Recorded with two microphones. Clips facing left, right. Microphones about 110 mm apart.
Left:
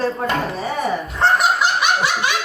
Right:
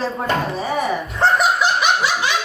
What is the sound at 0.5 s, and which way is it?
Speech, 25° right (ahead or behind).